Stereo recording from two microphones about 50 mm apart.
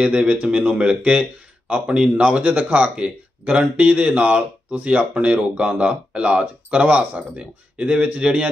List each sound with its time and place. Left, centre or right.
0.0 s speech: right